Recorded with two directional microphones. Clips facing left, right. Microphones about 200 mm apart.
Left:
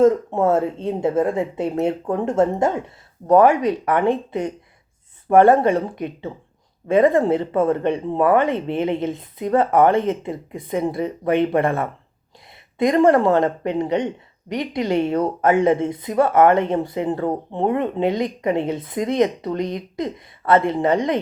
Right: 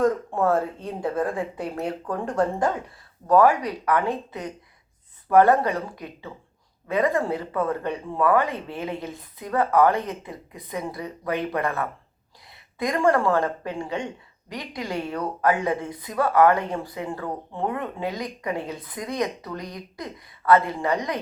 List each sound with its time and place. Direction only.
0.0 s a woman's voice: 25° left (ahead or behind)